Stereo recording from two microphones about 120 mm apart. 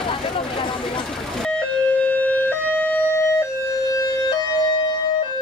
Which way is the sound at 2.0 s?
15° left (ahead or behind).